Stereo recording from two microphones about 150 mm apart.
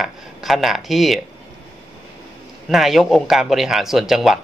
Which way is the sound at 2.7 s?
Centre (ahead or behind).